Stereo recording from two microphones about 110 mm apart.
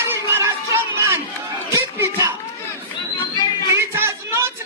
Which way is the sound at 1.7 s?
25° right (ahead or behind).